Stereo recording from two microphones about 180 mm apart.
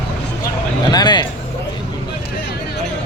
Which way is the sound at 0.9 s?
25° left (ahead or behind).